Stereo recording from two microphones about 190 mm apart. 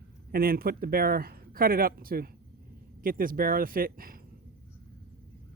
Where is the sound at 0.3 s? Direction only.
55° right (ahead or behind).